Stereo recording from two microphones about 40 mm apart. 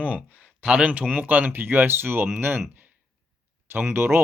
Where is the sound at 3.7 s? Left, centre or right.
Right.